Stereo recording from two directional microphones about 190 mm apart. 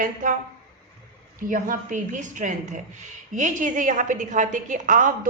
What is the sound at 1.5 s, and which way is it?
A woman's voice, 45° right (ahead or behind).